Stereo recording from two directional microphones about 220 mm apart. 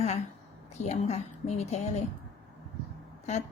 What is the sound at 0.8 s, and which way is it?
A woman's voice, 30° left (ahead or behind).